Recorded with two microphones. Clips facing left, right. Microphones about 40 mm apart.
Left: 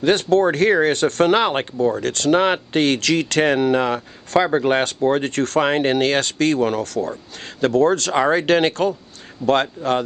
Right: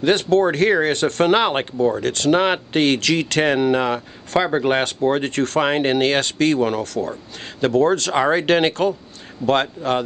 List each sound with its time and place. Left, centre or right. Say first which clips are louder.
0.0 s speech: even; right; by 4.7 s centre
5.2 s speech: even; right
6.8 s speech: left 1 dB; right
8.1 s speech: even; centre
9.4 s speech: left 1 dB; centre